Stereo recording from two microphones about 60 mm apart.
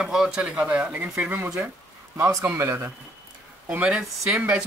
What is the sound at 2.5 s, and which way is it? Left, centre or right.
Speech, right.